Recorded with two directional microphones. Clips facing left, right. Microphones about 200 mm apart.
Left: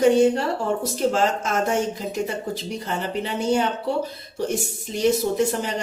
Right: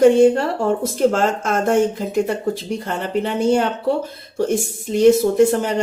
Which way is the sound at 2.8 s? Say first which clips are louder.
Right 5 dB; 50° right (ahead or behind).